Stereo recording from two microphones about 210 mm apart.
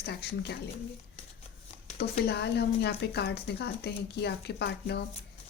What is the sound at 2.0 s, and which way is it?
Speech, 50° left (ahead or behind).